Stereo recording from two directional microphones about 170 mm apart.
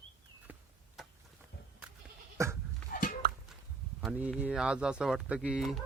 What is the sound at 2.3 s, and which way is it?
Goat, 15° right (ahead or behind).